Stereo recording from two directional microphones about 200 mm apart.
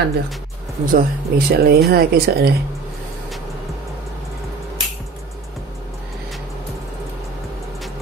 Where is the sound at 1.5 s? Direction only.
50° right (ahead or behind).